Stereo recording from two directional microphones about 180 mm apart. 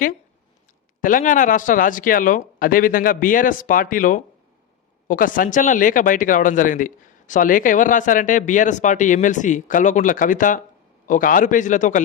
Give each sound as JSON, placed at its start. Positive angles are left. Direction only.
{"t": 1.0, "sound": "speech", "side_deg": 45}